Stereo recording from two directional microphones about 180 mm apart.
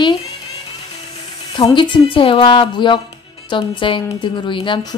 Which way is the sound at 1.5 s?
25° left (ahead or behind).